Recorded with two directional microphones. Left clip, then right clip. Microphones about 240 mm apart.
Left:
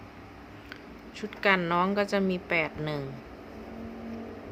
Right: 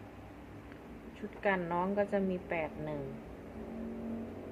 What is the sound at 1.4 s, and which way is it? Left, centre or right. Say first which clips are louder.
Speech: left 8 dB; left.